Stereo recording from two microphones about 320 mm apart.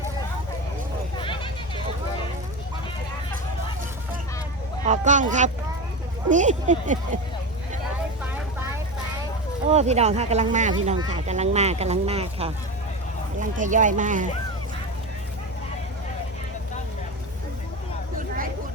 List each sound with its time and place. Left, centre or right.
1.2 s a sound: centre
4.9 s speech: right
9.6 s speech: right